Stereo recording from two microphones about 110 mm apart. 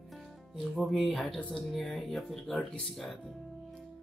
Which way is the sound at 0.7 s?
Centre (ahead or behind).